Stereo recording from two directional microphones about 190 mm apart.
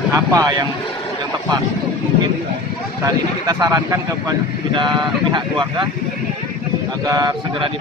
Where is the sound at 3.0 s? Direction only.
20° right (ahead or behind).